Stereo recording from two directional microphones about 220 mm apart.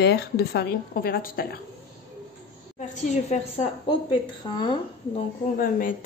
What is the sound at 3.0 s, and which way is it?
A woman's voice, 30° left (ahead or behind).